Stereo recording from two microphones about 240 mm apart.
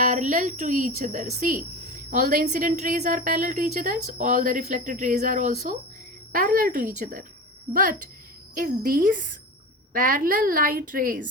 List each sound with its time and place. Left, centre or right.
0.0 s a woman's voice: right